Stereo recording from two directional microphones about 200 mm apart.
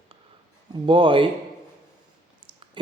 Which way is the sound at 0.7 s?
25° right (ahead or behind).